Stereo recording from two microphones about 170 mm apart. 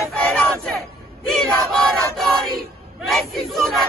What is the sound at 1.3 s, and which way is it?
Battle cry, centre (ahead or behind).